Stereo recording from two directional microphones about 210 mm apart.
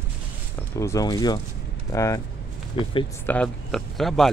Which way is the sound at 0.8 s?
15° left (ahead or behind).